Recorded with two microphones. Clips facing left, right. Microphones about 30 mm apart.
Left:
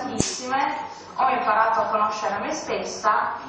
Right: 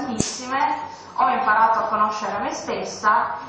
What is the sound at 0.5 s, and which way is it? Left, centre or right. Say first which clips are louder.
Speech: right 2 dB; centre.